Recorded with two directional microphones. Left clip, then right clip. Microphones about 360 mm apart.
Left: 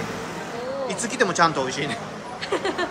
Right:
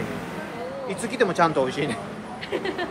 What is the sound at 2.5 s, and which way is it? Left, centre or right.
Speech, centre.